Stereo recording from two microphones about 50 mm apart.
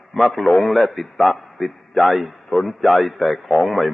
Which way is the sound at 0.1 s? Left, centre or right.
Centre.